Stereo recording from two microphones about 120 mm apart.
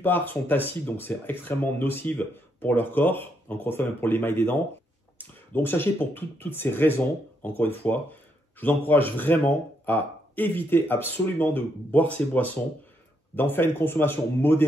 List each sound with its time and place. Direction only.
0.0 s speech: 15° left (ahead or behind)